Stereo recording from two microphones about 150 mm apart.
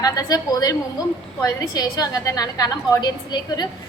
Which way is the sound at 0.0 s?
25° left (ahead or behind).